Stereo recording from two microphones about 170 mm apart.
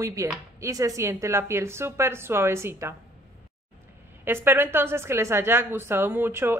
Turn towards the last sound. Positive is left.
turn(degrees=-15)  # may be behind; listen again after turning